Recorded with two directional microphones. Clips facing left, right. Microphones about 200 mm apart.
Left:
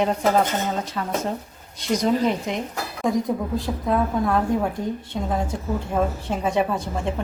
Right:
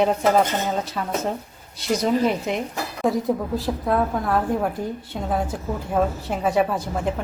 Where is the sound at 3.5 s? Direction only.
Centre (ahead or behind).